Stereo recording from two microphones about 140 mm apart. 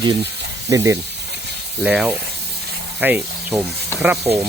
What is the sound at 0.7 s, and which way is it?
Speech, 25° right (ahead or behind).